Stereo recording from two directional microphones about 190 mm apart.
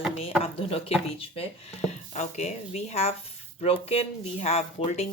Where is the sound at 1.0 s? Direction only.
30° left (ahead or behind).